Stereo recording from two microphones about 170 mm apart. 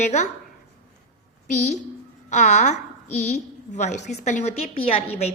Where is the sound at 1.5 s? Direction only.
45° left (ahead or behind).